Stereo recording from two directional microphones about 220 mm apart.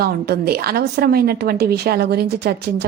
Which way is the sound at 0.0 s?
45° right (ahead or behind).